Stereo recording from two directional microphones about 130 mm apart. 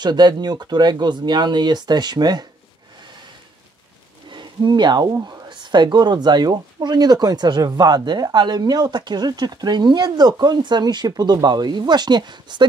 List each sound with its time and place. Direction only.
0.0 s speech: 35° right (ahead or behind)
4.3 s speech: 35° right (ahead or behind)